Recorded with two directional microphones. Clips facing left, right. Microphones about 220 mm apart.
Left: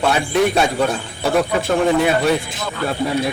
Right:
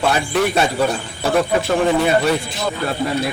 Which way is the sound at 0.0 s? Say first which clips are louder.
Left 1 dB; centre (ahead or behind).